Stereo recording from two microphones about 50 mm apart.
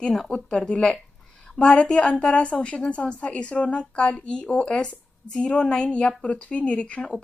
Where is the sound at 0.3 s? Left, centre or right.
Centre.